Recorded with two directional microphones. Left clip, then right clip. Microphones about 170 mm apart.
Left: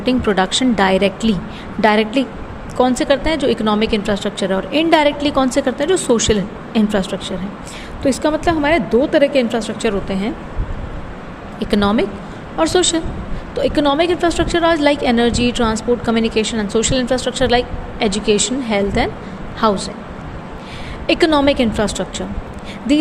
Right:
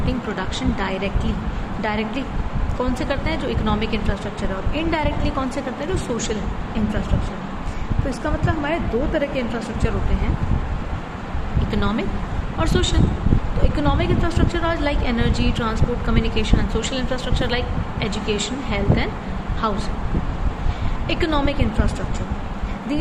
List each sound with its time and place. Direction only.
0.0 s a woman's voice: 55° left (ahead or behind)
8.1 s speech: 60° left (ahead or behind)
11.7 s a woman's voice: 55° left (ahead or behind)
21.1 s a woman's voice: 50° left (ahead or behind)